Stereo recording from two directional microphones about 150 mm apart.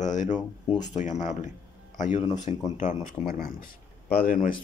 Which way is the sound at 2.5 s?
45° left (ahead or behind).